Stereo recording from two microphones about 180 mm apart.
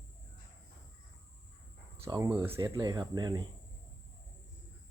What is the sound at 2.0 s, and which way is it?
Speech, 20° right (ahead or behind).